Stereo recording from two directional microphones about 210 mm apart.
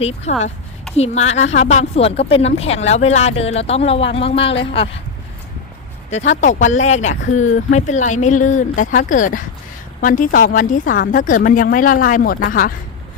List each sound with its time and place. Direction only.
0.0 s speech: 30° left (ahead or behind)
6.1 s speech: 35° left (ahead or behind)